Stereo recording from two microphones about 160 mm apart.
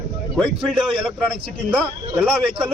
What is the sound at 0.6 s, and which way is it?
Speech, centre (ahead or behind).